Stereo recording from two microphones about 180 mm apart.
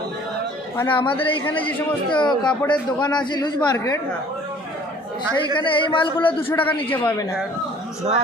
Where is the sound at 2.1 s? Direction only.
25° left (ahead or behind).